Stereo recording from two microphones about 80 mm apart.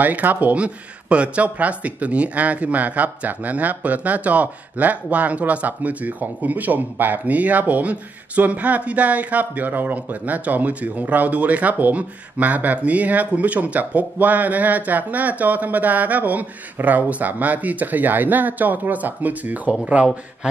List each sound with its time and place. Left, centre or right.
0.0 s speech: right